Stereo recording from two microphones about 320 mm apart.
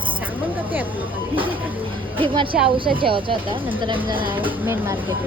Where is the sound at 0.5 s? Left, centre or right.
Centre.